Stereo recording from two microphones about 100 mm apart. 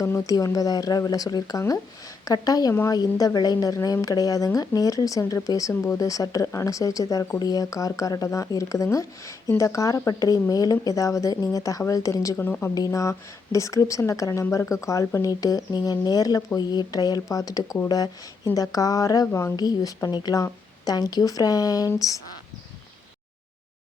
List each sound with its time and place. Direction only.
0.0 s speech: 35° left (ahead or behind)
12.4 s speech: 20° left (ahead or behind)
12.7 s speech: 35° left (ahead or behind)
19.5 s speech: 40° left (ahead or behind)